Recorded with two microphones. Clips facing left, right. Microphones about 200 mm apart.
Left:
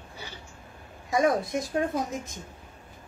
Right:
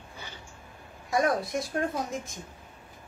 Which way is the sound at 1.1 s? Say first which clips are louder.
Left 2 dB; 20° left (ahead or behind).